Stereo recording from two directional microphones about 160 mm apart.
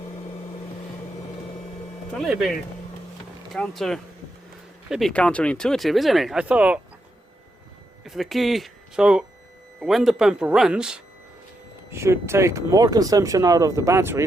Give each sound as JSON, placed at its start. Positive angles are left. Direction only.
{"t": 2.1, "sound": "speech", "side_deg": 0}
{"t": 8.0, "sound": "speech", "side_deg": 0}
{"t": 11.9, "sound": "speech", "side_deg": -15}